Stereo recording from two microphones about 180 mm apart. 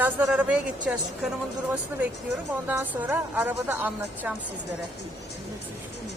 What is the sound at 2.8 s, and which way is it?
A woman's voice, 10° right (ahead or behind).